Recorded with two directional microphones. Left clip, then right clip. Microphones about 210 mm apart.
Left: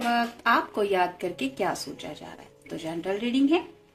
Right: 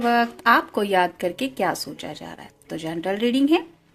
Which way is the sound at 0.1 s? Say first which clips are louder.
Right 5 dB; 45° right (ahead or behind).